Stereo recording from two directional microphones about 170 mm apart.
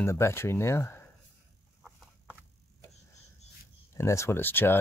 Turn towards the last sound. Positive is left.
turn(degrees=10)  # may be behind; listen again after turning